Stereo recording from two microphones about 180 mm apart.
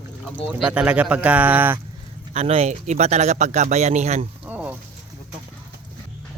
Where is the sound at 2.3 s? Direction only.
35° right (ahead or behind).